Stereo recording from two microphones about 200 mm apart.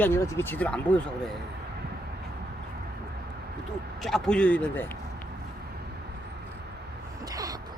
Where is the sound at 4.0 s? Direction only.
Centre (ahead or behind).